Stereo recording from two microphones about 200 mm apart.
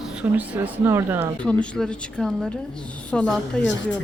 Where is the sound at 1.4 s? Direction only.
5° left (ahead or behind).